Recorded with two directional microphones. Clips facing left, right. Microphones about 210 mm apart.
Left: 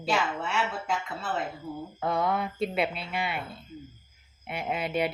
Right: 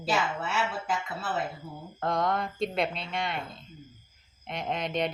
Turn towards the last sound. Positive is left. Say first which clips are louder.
# left 1 dB
turn(degrees=5)  # may be behind; listen again after turning